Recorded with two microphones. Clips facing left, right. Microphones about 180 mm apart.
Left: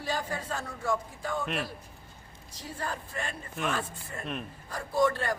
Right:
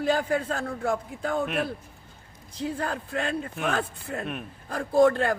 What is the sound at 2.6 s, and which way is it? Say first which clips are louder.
Speech: right 7 dB; 60° right (ahead or behind).